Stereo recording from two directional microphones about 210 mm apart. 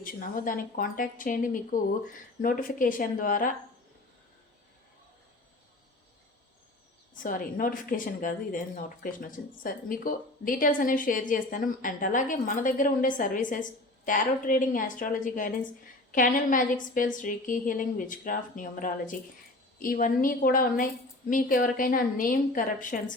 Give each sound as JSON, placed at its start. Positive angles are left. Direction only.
{"t": 0.0, "sound": "a woman's voice", "side_deg": 40}
{"t": 7.2, "sound": "a woman's voice", "side_deg": 40}